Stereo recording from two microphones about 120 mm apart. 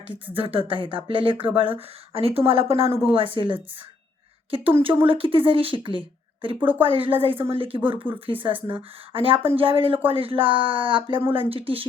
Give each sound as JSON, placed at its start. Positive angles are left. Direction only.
{"t": 0.3, "sound": "speech", "side_deg": -50}
{"t": 4.8, "sound": "a woman's voice", "side_deg": -50}